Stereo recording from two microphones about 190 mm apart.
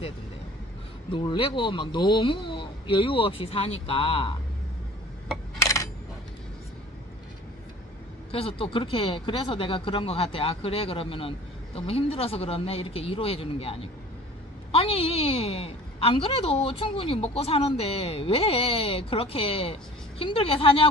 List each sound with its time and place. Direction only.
1.1 s speech: 25° left (ahead or behind)
5.6 s coin: 15° left (ahead or behind)
8.3 s a woman's voice: 30° left (ahead or behind)